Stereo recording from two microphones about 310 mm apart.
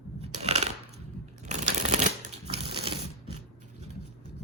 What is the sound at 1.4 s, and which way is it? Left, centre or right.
Shuffling cards, right.